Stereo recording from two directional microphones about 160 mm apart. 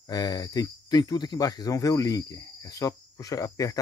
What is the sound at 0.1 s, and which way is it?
Speech, 25° left (ahead or behind).